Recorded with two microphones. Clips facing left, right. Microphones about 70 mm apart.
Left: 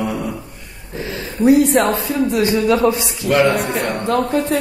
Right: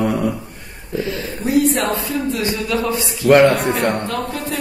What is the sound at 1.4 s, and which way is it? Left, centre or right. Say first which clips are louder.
Speech: left 5 dB; left.